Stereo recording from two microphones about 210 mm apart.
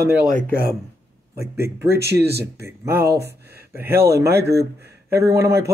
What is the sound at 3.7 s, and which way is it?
Speech, 10° right (ahead or behind).